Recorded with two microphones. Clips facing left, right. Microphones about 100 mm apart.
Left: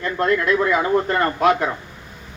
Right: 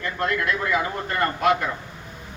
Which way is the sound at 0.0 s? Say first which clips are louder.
Left 5 dB; 45° left (ahead or behind).